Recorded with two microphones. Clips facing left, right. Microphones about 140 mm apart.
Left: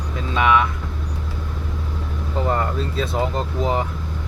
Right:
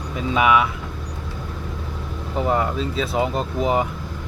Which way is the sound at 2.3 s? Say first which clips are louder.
Right 1 dB; 5° right (ahead or behind).